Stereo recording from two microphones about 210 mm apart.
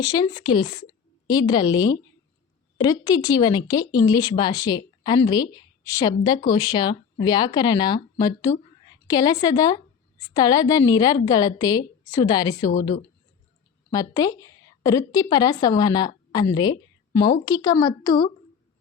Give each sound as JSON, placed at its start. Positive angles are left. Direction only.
{"t": 0.0, "sound": "a woman's voice", "side_deg": 20}
{"t": 13.9, "sound": "a woman's voice", "side_deg": 15}